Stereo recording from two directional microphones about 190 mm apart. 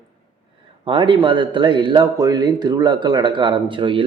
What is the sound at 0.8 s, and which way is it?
Speech, 25° right (ahead or behind).